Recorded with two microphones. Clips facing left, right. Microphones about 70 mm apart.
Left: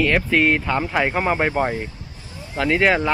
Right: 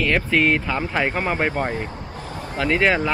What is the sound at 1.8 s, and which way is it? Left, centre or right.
Vehicle, right.